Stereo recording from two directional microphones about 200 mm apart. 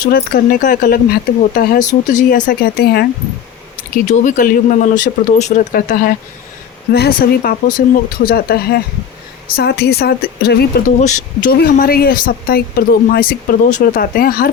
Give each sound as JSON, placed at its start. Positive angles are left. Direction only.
{"t": 0.0, "sound": "speech", "side_deg": 45}
{"t": 2.5, "sound": "speech", "side_deg": 50}
{"t": 4.0, "sound": "speech", "side_deg": 40}
{"t": 11.0, "sound": "speech", "side_deg": 40}